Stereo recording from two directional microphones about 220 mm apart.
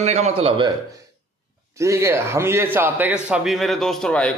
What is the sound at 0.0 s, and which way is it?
Speech, 30° right (ahead or behind).